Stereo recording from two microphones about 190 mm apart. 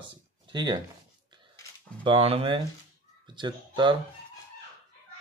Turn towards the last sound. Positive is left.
turn(degrees=-25)  # may be behind; listen again after turning